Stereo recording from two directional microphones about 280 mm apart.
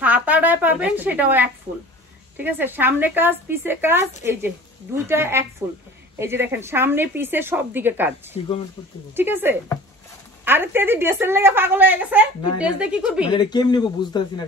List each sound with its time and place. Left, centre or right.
0.0 s a sound: centre
2.3 s a woman's voice: centre
13.3 s speech: centre